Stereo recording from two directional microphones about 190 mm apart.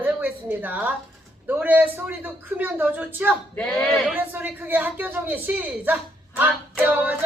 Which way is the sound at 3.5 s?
5° left (ahead or behind).